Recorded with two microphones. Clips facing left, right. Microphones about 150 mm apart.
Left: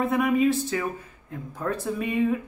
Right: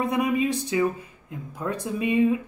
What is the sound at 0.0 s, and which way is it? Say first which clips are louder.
Speech: left 2 dB; 15° right (ahead or behind).